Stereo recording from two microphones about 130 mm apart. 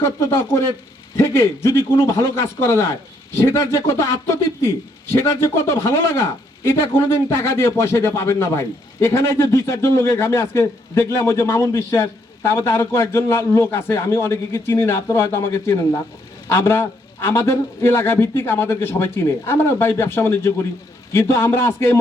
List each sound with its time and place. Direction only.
0.0 s speech: 20° left (ahead or behind)
5.1 s speech: 20° left (ahead or behind)